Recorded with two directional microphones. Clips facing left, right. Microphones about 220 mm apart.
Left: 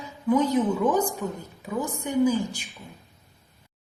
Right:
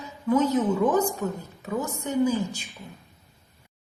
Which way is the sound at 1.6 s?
15° left (ahead or behind).